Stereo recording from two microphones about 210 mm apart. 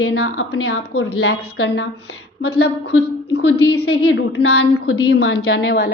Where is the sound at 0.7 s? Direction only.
50° left (ahead or behind).